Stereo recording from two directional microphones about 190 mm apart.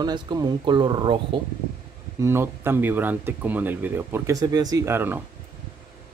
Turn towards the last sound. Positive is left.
turn(degrees=-10)  # may be behind; listen again after turning